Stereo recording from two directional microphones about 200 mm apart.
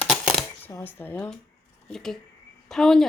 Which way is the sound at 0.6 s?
10° left (ahead or behind).